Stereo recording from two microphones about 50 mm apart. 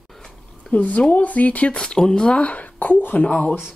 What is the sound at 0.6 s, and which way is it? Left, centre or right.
Speech, left.